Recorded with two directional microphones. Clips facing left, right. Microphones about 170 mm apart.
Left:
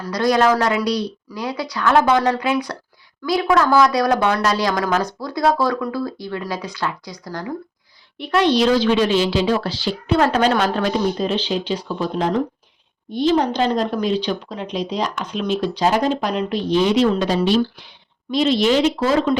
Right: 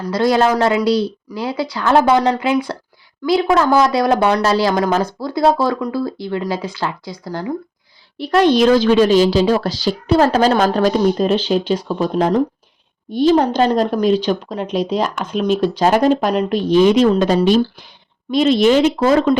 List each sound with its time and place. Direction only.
0.0 s speech: 25° right (ahead or behind)
8.2 s a woman's voice: 45° right (ahead or behind)